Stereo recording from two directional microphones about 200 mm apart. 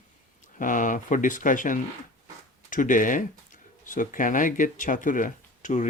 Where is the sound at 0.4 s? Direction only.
40° left (ahead or behind).